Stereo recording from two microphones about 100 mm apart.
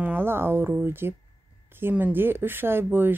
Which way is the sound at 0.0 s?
20° right (ahead or behind).